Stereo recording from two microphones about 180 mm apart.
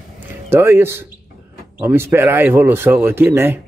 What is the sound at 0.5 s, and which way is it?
Speech, 15° right (ahead or behind).